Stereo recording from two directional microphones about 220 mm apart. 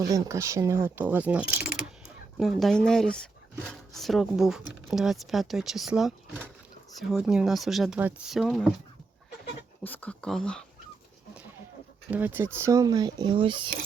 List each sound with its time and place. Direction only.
0.0 s speech: 15° right (ahead or behind)
9.8 s speech: 10° left (ahead or behind)
12.1 s speech: 10° right (ahead or behind)